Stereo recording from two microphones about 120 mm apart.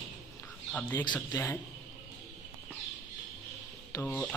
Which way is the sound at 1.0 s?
40° left (ahead or behind).